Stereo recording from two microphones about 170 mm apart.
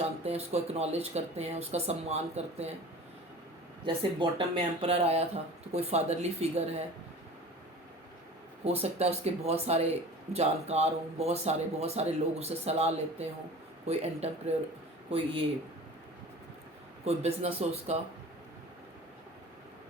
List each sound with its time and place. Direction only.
0.0 s speech: 35° right (ahead or behind)
3.8 s speech: 30° right (ahead or behind)
8.6 s speech: 35° right (ahead or behind)
17.1 s speech: 35° right (ahead or behind)